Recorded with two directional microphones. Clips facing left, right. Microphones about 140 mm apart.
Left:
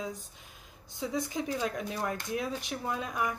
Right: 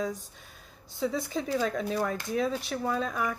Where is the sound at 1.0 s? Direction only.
15° left (ahead or behind).